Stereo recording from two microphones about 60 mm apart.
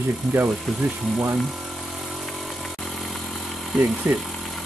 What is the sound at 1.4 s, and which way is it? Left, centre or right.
Vehicle, centre.